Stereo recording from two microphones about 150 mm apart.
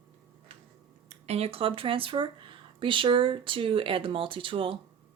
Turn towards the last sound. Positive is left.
turn(degrees=-35)  # may be behind; listen again after turning